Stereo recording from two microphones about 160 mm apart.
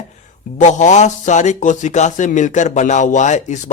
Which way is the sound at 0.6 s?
50° left (ahead or behind).